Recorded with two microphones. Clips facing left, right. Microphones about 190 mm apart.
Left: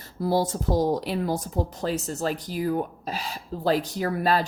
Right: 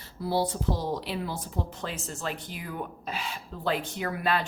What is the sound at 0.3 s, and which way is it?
A woman's voice, 45° left (ahead or behind).